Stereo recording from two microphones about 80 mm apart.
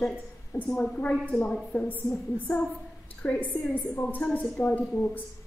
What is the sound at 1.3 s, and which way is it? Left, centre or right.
Speech, centre.